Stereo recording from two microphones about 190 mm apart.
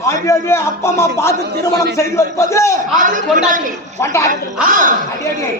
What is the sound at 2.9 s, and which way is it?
Speech, 45° right (ahead or behind).